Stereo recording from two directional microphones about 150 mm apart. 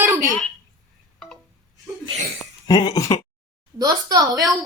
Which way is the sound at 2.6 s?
25° left (ahead or behind).